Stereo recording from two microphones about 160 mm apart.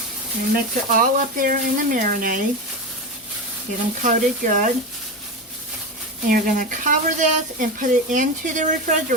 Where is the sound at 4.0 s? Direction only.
50° right (ahead or behind).